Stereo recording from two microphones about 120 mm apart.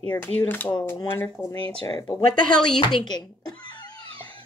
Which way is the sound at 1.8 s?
40° left (ahead or behind).